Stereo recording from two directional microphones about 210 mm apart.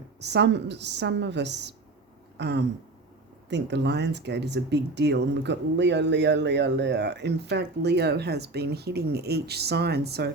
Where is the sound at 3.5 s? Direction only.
55° right (ahead or behind).